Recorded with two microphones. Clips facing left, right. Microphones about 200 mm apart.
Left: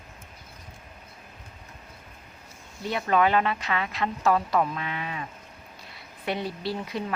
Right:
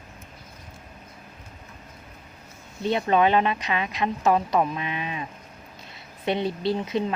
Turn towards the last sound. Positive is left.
turn(degrees=-20)  # may be behind; listen again after turning